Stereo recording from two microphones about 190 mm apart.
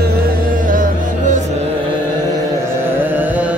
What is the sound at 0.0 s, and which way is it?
Music, 45° right (ahead or behind).